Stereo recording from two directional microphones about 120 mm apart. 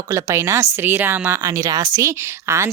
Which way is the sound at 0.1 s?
25° right (ahead or behind).